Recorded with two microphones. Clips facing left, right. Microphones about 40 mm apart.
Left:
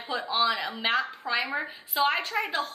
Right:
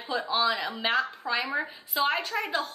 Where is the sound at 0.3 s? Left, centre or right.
Centre.